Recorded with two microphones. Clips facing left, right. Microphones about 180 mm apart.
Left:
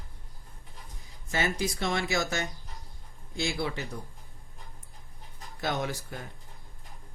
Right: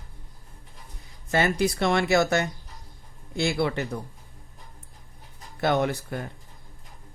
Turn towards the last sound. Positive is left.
turn(degrees=-60)  # may be behind; listen again after turning